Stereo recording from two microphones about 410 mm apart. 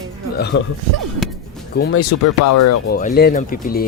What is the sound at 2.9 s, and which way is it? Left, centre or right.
Speech, left.